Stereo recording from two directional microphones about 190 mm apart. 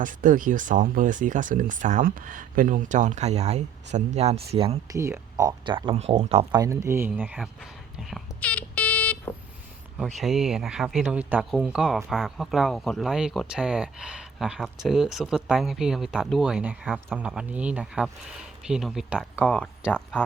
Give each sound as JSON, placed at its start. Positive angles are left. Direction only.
{"t": 0.0, "sound": "speech", "side_deg": -45}
{"t": 4.9, "sound": "speech", "side_deg": -15}
{"t": 6.6, "sound": "whispering", "side_deg": -15}
{"t": 10.2, "sound": "speech", "side_deg": 0}